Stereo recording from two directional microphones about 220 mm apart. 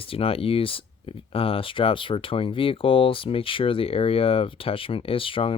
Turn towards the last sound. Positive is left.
turn(degrees=25)  # may be behind; listen again after turning